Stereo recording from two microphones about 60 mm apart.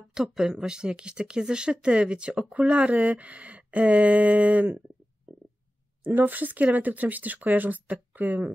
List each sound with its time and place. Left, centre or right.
0.1 s speech: centre; by 4.8 s right
6.0 s speech: right